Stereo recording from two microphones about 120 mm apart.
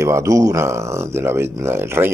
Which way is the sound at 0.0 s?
25° right (ahead or behind).